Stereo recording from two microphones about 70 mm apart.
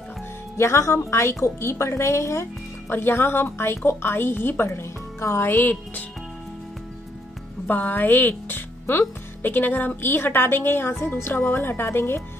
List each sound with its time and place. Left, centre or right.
0.6 s a woman's voice: left
2.9 s a woman's voice: left
7.6 s a woman's voice: left